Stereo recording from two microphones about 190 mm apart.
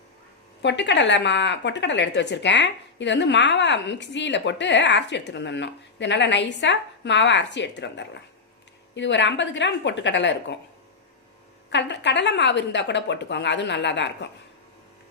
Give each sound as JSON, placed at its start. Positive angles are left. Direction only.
{"t": 0.6, "sound": "a woman's voice", "side_deg": 70}
{"t": 11.7, "sound": "a woman's voice", "side_deg": 70}